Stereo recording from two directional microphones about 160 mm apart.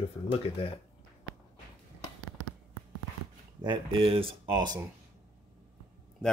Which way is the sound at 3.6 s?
30° right (ahead or behind).